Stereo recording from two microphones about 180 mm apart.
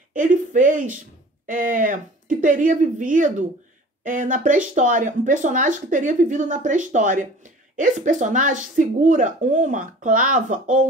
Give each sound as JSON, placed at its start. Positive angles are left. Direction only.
{"t": 0.1, "sound": "speech", "side_deg": -45}